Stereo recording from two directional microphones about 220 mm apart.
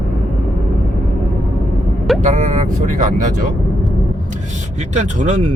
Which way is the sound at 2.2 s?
35° right (ahead or behind).